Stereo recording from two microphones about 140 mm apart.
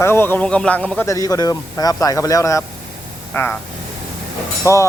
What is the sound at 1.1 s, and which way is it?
Speech, 25° left (ahead or behind).